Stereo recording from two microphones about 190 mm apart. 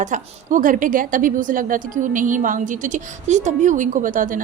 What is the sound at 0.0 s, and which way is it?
A woman's voice, 40° right (ahead or behind).